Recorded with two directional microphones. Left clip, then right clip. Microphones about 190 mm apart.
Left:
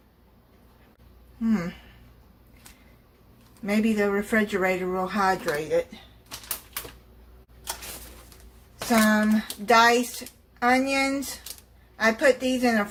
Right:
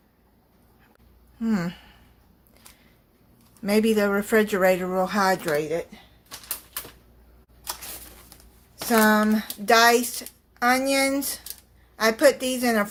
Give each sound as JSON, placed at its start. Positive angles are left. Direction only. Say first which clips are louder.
{"t": 1.4, "sound": "speech", "louder": "even", "side_deg": -55}
{"t": 3.6, "sound": "speech", "louder": "right 4 dB", "side_deg": -55}
{"t": 8.9, "sound": "speech", "louder": "right 3 dB", "side_deg": -55}